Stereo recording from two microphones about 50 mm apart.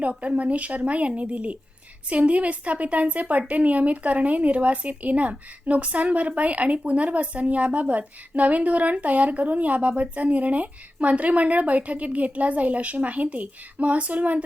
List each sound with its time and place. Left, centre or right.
0.0 s a woman's voice: right